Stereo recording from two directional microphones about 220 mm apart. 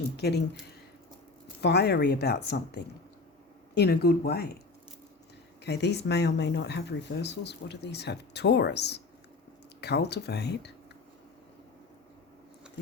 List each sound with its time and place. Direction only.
0.2 s speech: 50° left (ahead or behind)
1.6 s speech: 50° left (ahead or behind)
5.6 s speech: 50° left (ahead or behind)
12.7 s a sound: 5° right (ahead or behind)